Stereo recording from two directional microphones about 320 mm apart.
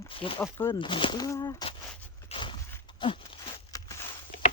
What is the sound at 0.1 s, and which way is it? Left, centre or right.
Speech, centre.